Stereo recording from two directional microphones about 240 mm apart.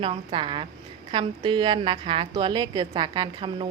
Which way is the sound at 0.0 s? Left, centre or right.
Right.